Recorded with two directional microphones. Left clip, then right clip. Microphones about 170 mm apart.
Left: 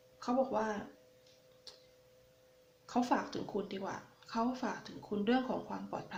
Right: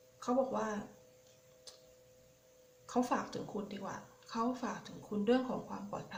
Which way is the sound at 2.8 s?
20° left (ahead or behind).